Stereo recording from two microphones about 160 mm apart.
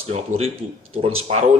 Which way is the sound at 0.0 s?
40° right (ahead or behind).